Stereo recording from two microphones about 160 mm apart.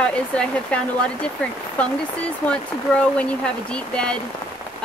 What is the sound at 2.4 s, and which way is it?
Speech, 5° left (ahead or behind).